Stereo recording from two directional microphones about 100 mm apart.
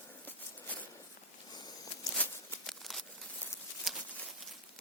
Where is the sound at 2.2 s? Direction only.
15° left (ahead or behind).